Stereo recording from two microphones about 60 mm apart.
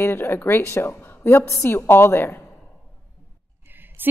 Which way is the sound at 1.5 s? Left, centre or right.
Left.